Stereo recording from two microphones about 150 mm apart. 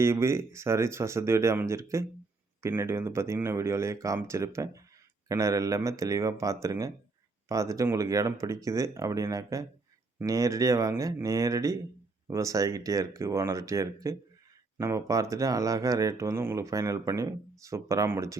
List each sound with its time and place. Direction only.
0.0 s speech: 20° right (ahead or behind)